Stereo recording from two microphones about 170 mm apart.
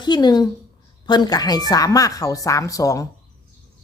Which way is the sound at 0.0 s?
25° left (ahead or behind).